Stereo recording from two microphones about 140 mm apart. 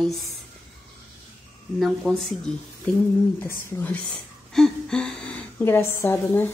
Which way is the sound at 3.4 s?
10° left (ahead or behind).